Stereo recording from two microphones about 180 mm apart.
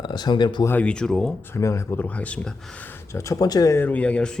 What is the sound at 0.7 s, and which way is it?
Speech, 5° left (ahead or behind).